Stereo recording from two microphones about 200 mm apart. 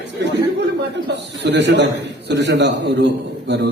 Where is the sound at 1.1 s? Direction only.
60° right (ahead or behind).